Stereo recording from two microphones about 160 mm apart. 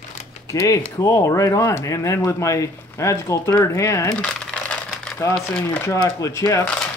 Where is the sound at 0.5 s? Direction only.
20° left (ahead or behind).